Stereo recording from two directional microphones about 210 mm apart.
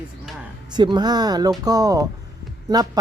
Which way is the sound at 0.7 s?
20° right (ahead or behind).